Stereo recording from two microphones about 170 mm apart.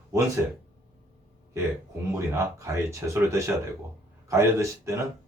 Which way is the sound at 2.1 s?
15° right (ahead or behind).